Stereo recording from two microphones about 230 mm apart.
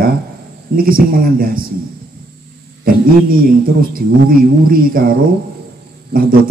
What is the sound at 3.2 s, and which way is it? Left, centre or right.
A man's voice, right.